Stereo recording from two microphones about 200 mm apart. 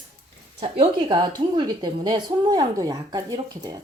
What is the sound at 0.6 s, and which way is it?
A woman's voice, 25° right (ahead or behind).